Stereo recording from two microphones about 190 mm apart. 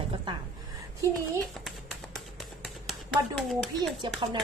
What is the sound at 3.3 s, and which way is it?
Speech, 5° left (ahead or behind).